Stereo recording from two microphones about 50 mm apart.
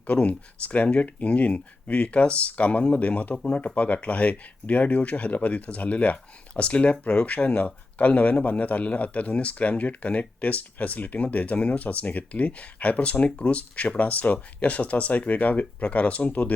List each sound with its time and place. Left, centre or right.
0.1 s speech: left